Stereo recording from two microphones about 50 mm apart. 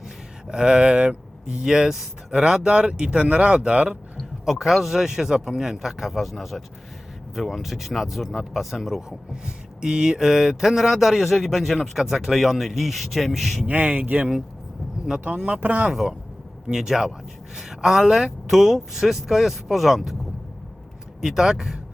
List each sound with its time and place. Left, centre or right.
0.4 s speech: centre
4.2 s speech: centre
9.0 s speech: centre
13.7 s speech: right
15.4 s speech: right
15.9 s speech: centre
21.2 s speech: centre